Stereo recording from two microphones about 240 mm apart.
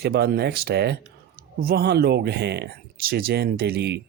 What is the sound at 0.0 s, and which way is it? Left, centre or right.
Speech, right.